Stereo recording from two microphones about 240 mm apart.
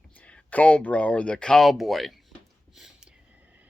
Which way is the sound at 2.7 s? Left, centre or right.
Centre.